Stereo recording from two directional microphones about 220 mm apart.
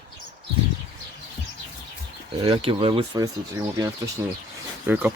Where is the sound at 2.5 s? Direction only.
20° right (ahead or behind).